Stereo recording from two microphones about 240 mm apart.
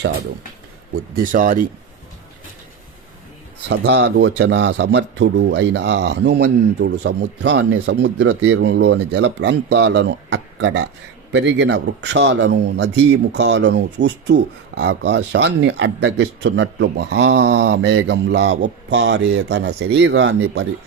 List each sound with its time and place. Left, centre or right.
1.1 s speech: right
3.7 s speech: right